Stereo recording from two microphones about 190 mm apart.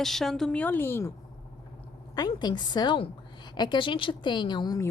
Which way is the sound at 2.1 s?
20° left (ahead or behind).